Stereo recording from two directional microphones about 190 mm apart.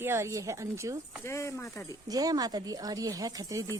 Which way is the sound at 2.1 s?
20° right (ahead or behind).